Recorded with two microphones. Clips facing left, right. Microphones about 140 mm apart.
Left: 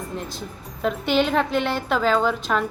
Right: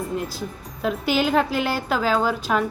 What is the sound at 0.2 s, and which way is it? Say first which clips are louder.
A woman's voice: right 3 dB; 5° right (ahead or behind).